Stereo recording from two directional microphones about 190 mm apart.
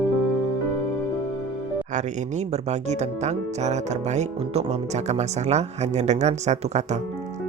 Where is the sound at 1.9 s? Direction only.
40° right (ahead or behind).